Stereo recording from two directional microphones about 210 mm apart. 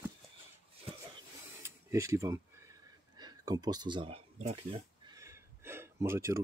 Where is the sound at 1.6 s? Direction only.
15° right (ahead or behind); by 4.8 s 30° right (ahead or behind).